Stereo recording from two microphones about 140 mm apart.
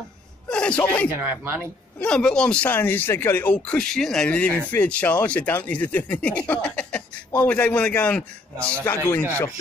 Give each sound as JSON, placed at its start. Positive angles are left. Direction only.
{"t": 0.5, "sound": "speech", "side_deg": 5}
{"t": 1.1, "sound": "speech", "side_deg": -15}
{"t": 2.0, "sound": "speech", "side_deg": 5}